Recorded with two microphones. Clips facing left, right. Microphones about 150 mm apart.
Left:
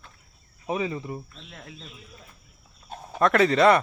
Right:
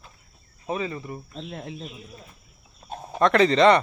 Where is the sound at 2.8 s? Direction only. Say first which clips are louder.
Right 4 dB; 30° right (ahead or behind).